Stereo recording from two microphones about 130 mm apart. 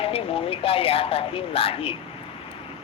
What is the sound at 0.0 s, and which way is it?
Speech, 45° left (ahead or behind).